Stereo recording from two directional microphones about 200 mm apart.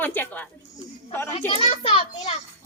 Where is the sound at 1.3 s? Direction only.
25° left (ahead or behind).